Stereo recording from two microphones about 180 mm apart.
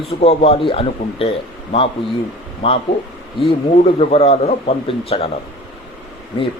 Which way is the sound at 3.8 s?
35° left (ahead or behind).